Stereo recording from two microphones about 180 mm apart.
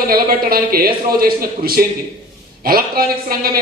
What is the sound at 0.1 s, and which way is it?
A man's voice, 55° right (ahead or behind).